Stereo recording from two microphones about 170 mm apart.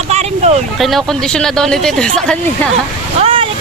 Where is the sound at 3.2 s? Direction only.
35° right (ahead or behind).